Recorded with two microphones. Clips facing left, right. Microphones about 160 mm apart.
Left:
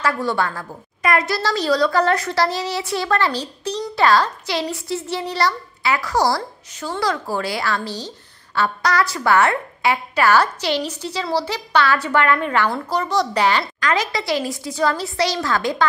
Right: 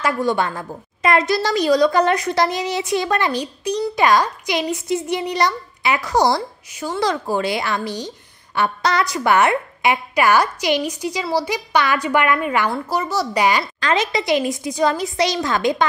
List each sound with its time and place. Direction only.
0.0 s a woman's voice: 15° right (ahead or behind)
13.7 s a woman's voice: 25° right (ahead or behind)